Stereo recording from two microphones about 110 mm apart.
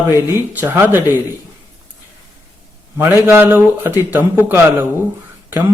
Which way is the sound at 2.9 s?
20° right (ahead or behind).